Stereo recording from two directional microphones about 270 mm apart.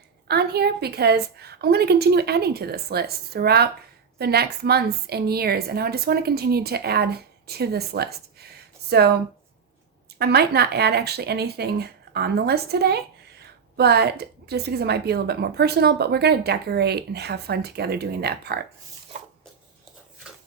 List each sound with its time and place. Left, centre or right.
0.3 s a woman's voice: right
10.2 s a woman's voice: right